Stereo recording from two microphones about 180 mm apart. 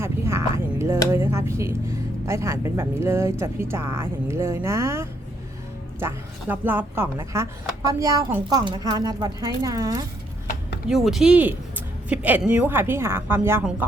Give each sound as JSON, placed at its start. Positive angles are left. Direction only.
{"t": 0.0, "sound": "a woman's voice", "side_deg": -15}
{"t": 10.8, "sound": "speech", "side_deg": 0}